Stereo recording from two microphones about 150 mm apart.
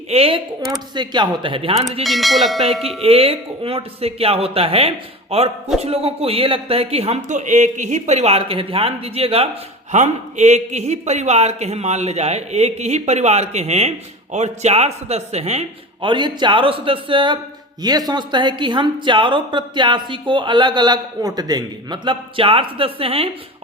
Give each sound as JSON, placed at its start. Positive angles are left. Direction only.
{"t": 0.1, "sound": "speech", "side_deg": -40}
{"t": 2.0, "sound": "bell", "side_deg": 0}
{"t": 3.0, "sound": "speech", "side_deg": -40}
{"t": 9.9, "sound": "a man's voice", "side_deg": -50}
{"t": 16.0, "sound": "speech", "side_deg": -30}